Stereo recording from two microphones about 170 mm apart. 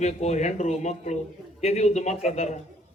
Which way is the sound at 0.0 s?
40° left (ahead or behind).